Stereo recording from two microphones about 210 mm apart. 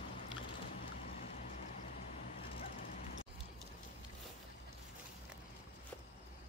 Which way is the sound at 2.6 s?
40° left (ahead or behind).